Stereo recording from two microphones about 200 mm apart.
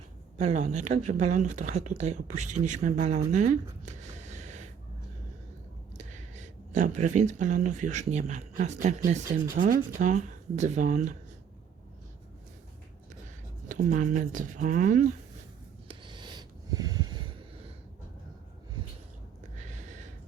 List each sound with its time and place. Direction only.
0.3 s speech: 35° right (ahead or behind)
6.3 s speech: 40° right (ahead or behind)
13.7 s speech: 40° right (ahead or behind)
15.9 s a sound: 25° right (ahead or behind)